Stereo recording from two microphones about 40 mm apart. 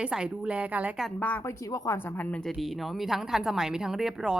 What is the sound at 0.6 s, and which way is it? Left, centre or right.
Speech, right.